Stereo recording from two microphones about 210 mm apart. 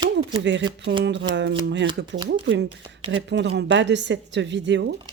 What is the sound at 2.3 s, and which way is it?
Speech, 55° right (ahead or behind).